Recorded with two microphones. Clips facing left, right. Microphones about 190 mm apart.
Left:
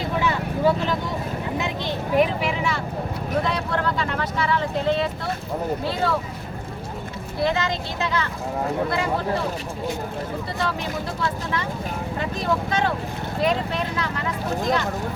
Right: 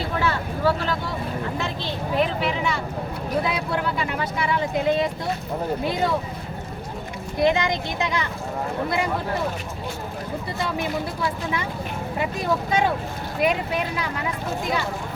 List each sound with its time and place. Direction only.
0.2 s vehicle: 15° left (ahead or behind)
2.1 s speech: 5° left (ahead or behind); by 6.1 s 15° right (ahead or behind)
7.3 s speech: 15° right (ahead or behind)
10.6 s speech: 10° right (ahead or behind)